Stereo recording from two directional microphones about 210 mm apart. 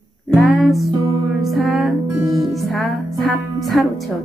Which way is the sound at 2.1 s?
15° right (ahead or behind).